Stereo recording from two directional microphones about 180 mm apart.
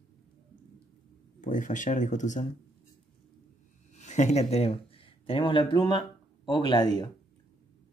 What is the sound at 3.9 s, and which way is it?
Speech, 40° left (ahead or behind).